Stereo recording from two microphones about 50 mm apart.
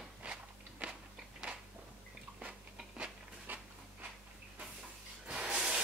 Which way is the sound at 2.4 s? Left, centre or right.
Right.